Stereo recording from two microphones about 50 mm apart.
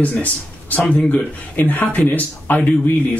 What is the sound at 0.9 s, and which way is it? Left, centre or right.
Speech, left.